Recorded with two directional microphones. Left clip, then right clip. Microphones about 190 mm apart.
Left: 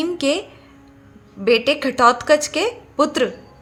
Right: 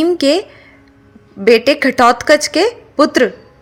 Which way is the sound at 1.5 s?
35° right (ahead or behind).